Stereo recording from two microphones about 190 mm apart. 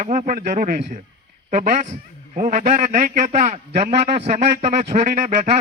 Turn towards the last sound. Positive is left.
turn(degrees=-40)  # may be behind; listen again after turning